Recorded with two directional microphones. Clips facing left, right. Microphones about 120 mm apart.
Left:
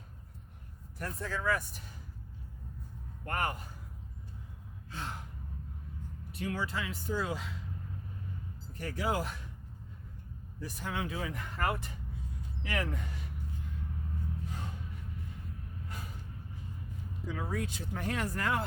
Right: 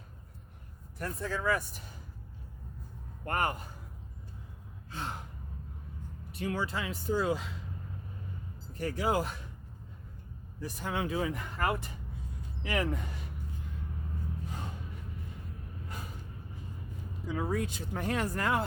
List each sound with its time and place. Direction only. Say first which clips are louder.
0.9 s speech: right 2 dB; 5° right (ahead or behind)
3.2 s speech: right 3 dB; 30° right (ahead or behind)
4.9 s sigh: right 2 dB; 20° right (ahead or behind)
6.4 s speech: right 2 dB; 30° right (ahead or behind)
8.8 s speech: right 3 dB; 30° right (ahead or behind)
10.6 s speech: right 3 dB; 25° right (ahead or behind)
11.3 s speech: right 2 dB; 10° right (ahead or behind)
12.6 s speech: right 4 dB; 20° right (ahead or behind)
17.3 s speech: right 5 dB; 30° right (ahead or behind)